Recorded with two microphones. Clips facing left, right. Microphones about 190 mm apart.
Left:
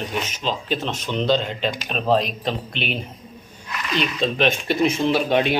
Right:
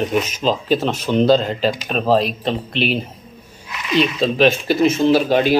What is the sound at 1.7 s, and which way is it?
Speech, centre (ahead or behind).